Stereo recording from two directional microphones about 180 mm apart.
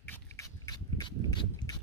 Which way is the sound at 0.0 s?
15° left (ahead or behind).